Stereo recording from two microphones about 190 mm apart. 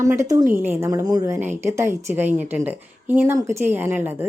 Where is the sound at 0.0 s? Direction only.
15° right (ahead or behind).